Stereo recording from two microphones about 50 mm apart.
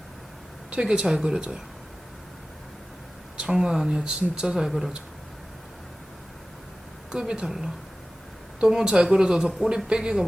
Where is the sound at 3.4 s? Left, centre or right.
Centre.